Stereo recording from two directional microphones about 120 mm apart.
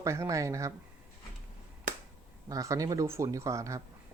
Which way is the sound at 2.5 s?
30° right (ahead or behind).